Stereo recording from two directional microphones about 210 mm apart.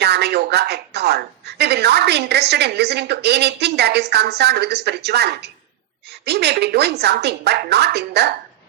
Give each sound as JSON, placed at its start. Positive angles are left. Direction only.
{"t": 0.0, "sound": "speech", "side_deg": -50}